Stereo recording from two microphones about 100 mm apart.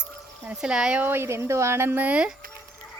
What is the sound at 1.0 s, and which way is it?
Speech, 20° right (ahead or behind).